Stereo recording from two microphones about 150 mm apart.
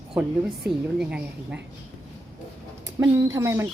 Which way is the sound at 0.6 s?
5° right (ahead or behind).